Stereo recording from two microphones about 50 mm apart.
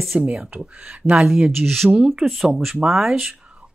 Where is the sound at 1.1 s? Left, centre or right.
Centre.